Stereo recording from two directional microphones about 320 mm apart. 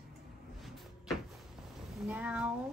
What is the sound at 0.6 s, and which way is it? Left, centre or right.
Cupboard open or close, centre.